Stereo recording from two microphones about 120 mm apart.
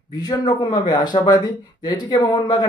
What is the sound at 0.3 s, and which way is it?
Speech, 35° left (ahead or behind).